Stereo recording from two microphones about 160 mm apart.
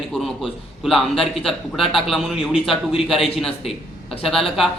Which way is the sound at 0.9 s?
Centre (ahead or behind).